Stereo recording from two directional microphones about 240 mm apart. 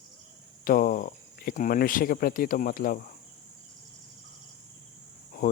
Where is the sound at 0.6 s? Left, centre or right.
Left.